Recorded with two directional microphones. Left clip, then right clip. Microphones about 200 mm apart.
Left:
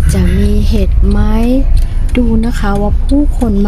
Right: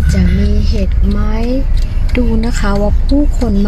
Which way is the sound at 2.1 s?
5° left (ahead or behind).